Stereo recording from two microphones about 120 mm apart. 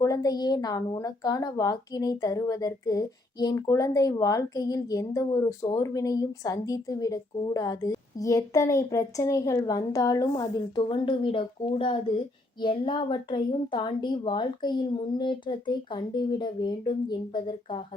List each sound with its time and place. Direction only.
0.0 s a woman's voice: 30° left (ahead or behind)